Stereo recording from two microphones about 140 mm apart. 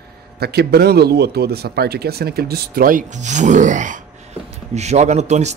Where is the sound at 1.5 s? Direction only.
90° right.